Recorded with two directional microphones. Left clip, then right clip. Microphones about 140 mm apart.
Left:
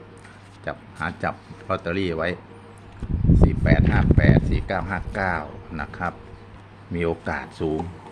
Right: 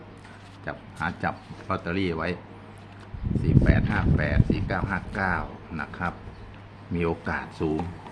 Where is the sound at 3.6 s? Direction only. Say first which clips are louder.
Left 5 dB; 40° left (ahead or behind).